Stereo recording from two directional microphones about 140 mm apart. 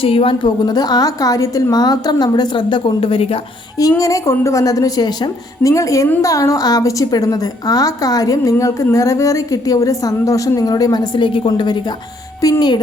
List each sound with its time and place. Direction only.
0.0 s a woman's voice: 40° left (ahead or behind)
3.8 s a woman's voice: 25° left (ahead or behind)